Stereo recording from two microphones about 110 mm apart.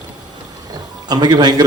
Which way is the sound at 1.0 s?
40° right (ahead or behind).